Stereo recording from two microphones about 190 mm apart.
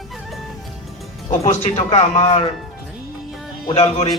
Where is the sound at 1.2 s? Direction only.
40° left (ahead or behind).